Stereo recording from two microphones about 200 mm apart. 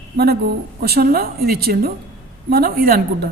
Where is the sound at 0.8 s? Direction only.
50° right (ahead or behind).